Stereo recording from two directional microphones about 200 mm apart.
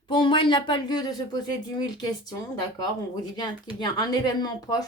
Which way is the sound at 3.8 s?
20° left (ahead or behind).